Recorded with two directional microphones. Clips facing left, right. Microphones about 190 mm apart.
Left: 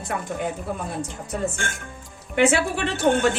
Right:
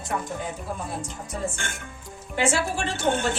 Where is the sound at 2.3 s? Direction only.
65° left (ahead or behind).